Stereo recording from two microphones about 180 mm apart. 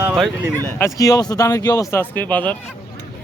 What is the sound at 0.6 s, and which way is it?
Speech, 15° left (ahead or behind).